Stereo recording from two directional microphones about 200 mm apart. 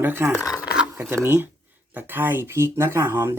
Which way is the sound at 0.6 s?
5° right (ahead or behind).